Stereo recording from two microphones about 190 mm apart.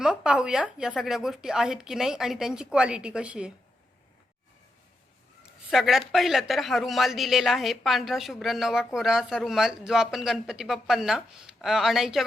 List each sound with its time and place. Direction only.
0.0 s speech: 5° right (ahead or behind)
5.7 s speech: centre (ahead or behind)